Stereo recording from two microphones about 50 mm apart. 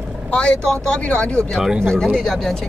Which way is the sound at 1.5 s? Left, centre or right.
Centre.